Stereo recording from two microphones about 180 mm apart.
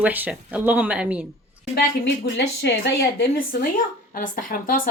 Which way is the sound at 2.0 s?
70° left (ahead or behind).